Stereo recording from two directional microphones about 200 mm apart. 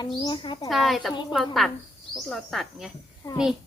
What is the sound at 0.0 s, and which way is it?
Speech, 20° left (ahead or behind).